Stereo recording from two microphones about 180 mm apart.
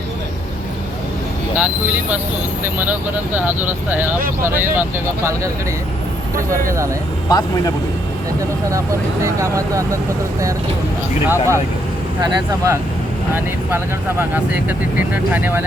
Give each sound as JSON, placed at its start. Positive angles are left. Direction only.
{"t": 1.5, "sound": "speech", "side_deg": -10}
{"t": 6.7, "sound": "speech", "side_deg": -15}
{"t": 7.3, "sound": "speech", "side_deg": 20}
{"t": 9.2, "sound": "speech", "side_deg": -15}
{"t": 11.3, "sound": "speech", "side_deg": -15}